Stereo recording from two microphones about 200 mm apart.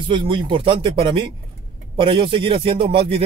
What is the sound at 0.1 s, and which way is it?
Speech, 25° right (ahead or behind).